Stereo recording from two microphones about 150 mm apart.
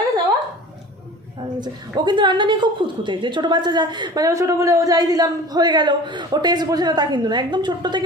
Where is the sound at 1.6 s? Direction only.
30° right (ahead or behind).